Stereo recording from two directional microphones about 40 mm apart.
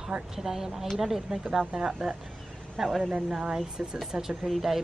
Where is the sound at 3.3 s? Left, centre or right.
Right.